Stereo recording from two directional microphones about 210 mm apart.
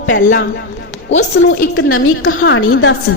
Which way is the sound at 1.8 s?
80° left.